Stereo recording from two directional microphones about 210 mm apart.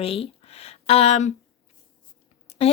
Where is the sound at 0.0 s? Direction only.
30° left (ahead or behind).